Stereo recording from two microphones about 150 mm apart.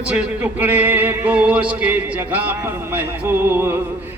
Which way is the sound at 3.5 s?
15° right (ahead or behind).